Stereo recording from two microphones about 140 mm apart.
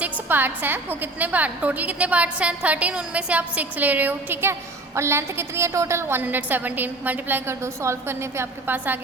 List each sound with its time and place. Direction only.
0.0 s a woman's voice: 15° right (ahead or behind)